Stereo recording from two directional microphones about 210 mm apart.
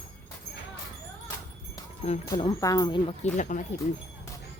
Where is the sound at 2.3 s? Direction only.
20° left (ahead or behind); by 3.6 s 35° left (ahead or behind).